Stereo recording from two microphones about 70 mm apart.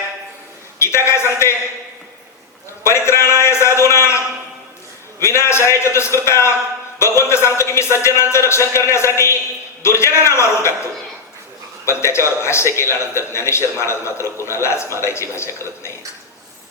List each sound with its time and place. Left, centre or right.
0.8 s a man's voice: left
2.8 s a sound: left
5.2 s a man's voice: left
11.9 s a man's voice: left